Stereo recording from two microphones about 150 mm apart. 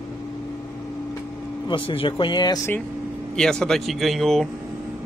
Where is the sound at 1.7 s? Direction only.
35° left (ahead or behind).